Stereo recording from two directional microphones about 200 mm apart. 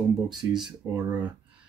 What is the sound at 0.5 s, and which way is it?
Speech, centre (ahead or behind).